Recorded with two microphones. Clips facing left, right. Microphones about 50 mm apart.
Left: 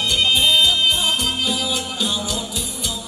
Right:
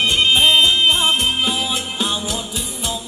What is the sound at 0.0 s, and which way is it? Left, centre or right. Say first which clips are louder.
Music: right 3 dB; right.